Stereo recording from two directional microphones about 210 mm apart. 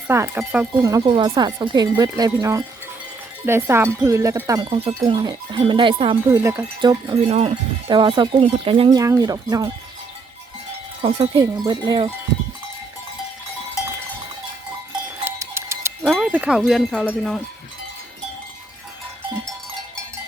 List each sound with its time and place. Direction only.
0.1 s speech: 10° right (ahead or behind)
6.3 s speech: 10° right (ahead or behind)
7.3 s speech: 30° right (ahead or behind)
11.0 s speech: 25° right (ahead or behind)
15.2 s sheep: 10° right (ahead or behind)
16.1 s wind chime: 5° right (ahead or behind)